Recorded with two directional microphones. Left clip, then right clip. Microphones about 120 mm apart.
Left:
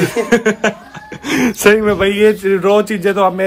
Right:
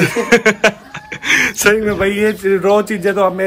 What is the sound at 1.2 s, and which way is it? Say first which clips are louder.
Speech: right 3 dB; 60° left (ahead or behind).